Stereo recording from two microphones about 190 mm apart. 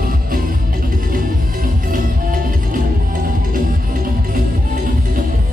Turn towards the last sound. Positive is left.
turn(degrees=-45)  # may be behind; listen again after turning